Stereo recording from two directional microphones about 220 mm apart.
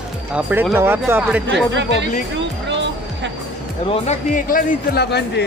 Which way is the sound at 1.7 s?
55° right (ahead or behind).